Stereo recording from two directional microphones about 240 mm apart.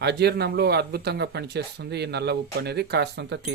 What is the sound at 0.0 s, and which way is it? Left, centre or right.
Speech, right.